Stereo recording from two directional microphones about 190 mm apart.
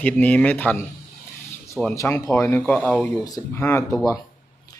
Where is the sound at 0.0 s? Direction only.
10° left (ahead or behind).